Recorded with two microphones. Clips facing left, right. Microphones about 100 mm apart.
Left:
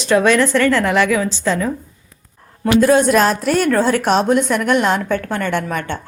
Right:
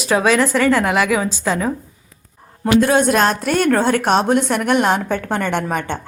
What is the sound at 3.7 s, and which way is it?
Speech, 55° right (ahead or behind).